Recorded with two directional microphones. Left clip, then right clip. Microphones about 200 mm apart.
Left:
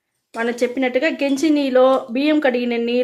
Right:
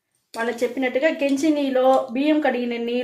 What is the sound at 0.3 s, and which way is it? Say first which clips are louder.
Speech: left 3 dB; 50° left (ahead or behind).